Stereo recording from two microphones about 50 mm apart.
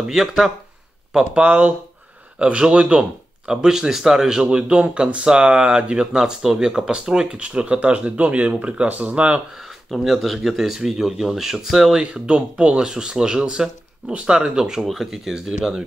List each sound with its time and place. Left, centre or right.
0.2 s speech: centre
1.4 s speech: right; by 4.4 s centre
4.4 s speech: centre
9.8 s speech: centre
12.0 s speech: centre